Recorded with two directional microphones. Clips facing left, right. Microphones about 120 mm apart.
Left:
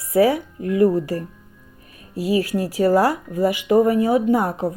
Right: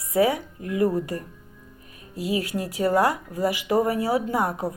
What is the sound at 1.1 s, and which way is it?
Speech, 70° left (ahead or behind).